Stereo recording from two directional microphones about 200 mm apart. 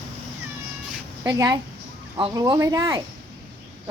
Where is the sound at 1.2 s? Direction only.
20° right (ahead or behind).